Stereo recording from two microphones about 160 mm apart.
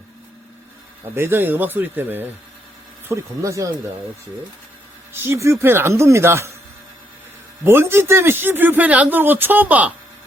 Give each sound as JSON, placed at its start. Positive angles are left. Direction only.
{"t": 1.1, "sound": "speech", "side_deg": -15}
{"t": 5.1, "sound": "speech", "side_deg": -15}
{"t": 7.6, "sound": "speech", "side_deg": -15}